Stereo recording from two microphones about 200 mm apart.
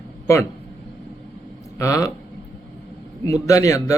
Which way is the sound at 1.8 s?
15° left (ahead or behind).